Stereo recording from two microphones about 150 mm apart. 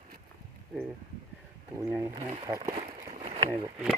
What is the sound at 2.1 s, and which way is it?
Speech, 40° right (ahead or behind).